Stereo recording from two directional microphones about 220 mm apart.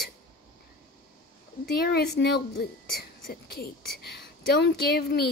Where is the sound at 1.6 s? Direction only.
45° left (ahead or behind).